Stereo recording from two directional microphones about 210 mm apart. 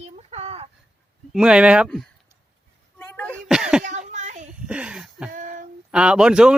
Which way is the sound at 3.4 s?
5° right (ahead or behind).